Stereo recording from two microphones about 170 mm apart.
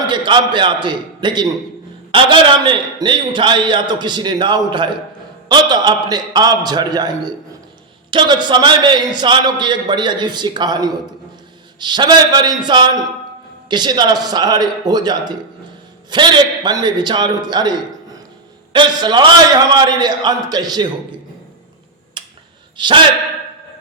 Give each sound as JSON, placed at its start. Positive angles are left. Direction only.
{"t": 0.1, "sound": "a man's voice", "side_deg": -30}
{"t": 22.2, "sound": "a sound", "side_deg": -30}
{"t": 22.8, "sound": "a man's voice", "side_deg": -25}